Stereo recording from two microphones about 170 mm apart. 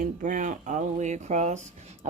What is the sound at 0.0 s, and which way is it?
Speech, 50° right (ahead or behind).